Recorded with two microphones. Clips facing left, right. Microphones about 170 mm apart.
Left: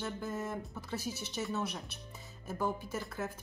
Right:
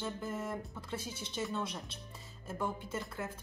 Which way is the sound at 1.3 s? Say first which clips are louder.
Even; 5° left (ahead or behind).